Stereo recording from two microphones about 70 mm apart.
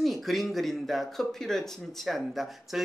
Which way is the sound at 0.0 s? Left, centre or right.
Centre.